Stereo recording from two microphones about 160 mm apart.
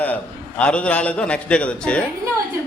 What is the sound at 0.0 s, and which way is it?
A man's voice, 10° left (ahead or behind).